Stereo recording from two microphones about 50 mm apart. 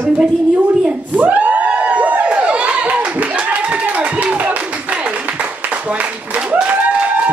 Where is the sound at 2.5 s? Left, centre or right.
Right.